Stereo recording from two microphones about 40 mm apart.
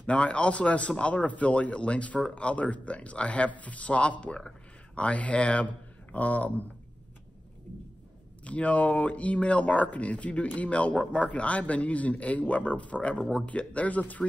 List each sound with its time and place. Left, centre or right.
0.0 s speech: left
6.1 s speech: left
8.5 s speech: left